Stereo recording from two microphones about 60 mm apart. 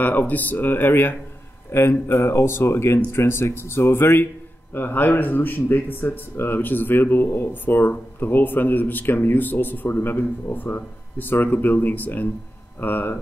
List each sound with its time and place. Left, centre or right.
0.0 s speech: left